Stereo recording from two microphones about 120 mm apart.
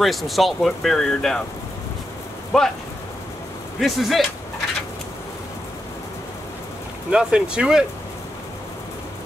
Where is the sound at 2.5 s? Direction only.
5° left (ahead or behind).